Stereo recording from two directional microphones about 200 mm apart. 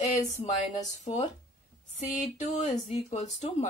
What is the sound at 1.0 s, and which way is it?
Speech, 35° left (ahead or behind).